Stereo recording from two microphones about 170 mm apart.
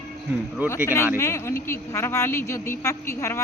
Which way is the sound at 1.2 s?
15° left (ahead or behind).